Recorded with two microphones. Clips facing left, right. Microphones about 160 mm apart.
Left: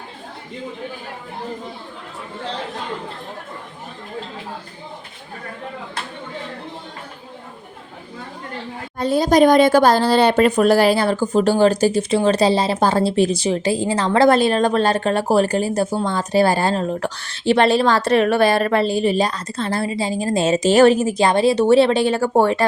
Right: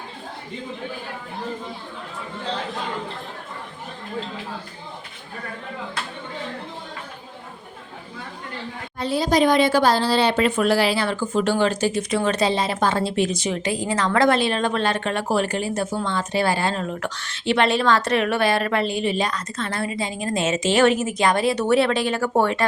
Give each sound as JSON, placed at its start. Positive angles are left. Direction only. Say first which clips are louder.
{"t": 9.0, "sound": "speech", "louder": "left 5 dB", "side_deg": 45}